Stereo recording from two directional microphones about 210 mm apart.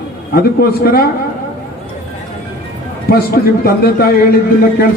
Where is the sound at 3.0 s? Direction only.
45° left (ahead or behind).